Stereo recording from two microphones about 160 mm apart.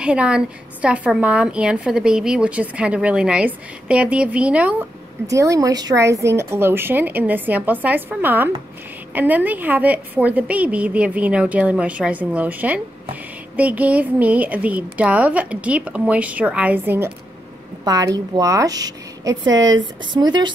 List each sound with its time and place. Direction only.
0.0 s a woman's voice: 5° right (ahead or behind)
5.2 s a woman's voice: 20° right (ahead or behind)
17.8 s speech: 25° right (ahead or behind)